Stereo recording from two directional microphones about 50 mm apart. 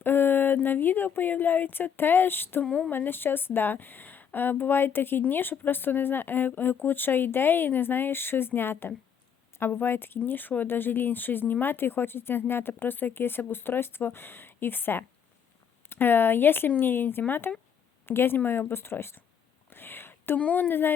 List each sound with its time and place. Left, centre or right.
0.0 s speech: left
19.7 s whispering: left
20.4 s speech: left
20.7 s speech: left